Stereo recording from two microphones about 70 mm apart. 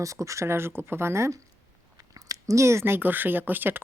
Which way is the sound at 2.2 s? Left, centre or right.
Right.